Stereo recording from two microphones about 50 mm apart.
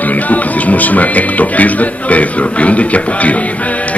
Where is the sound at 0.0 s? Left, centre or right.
Left.